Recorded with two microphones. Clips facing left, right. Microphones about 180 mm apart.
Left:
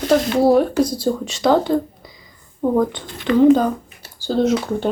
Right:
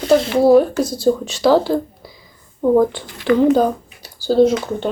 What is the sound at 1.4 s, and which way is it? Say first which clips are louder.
Speech: left 1 dB; 5° right (ahead or behind).